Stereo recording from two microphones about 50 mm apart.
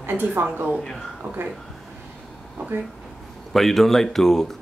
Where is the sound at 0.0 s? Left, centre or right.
Right.